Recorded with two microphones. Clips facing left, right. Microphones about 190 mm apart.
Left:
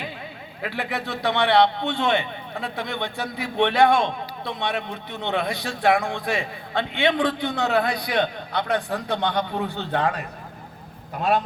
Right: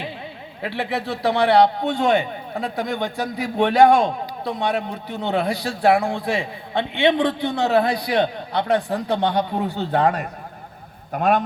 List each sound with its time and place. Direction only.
0.6 s a man's voice: 30° right (ahead or behind); by 11.4 s 50° right (ahead or behind)